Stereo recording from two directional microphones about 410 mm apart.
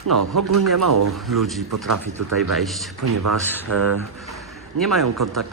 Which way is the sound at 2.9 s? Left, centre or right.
Right.